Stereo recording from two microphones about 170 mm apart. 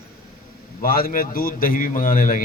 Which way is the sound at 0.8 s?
60° left (ahead or behind).